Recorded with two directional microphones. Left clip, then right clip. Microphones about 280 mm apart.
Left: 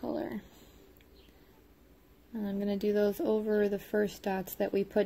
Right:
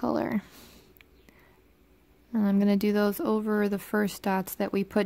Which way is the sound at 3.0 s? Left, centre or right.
Right.